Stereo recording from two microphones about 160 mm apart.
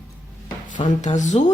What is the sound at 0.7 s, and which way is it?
Speech, 50° left (ahead or behind).